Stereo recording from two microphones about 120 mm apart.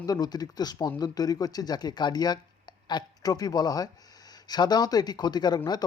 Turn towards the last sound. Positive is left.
turn(degrees=35)  # may be behind; listen again after turning